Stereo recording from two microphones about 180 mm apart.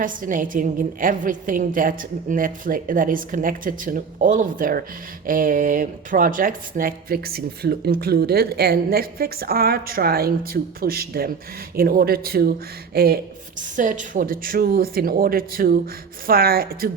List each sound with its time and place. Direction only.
0.0 s a woman's voice: 50° right (ahead or behind)
13.6 s a woman's voice: 45° right (ahead or behind)